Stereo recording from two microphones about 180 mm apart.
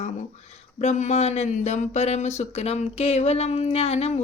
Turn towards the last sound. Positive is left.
turn(degrees=35)  # may be behind; listen again after turning